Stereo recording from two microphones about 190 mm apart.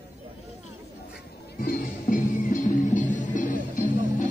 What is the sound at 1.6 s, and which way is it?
Music, 50° left (ahead or behind).